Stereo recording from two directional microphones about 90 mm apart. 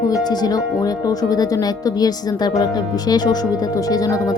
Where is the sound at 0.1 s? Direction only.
50° left (ahead or behind).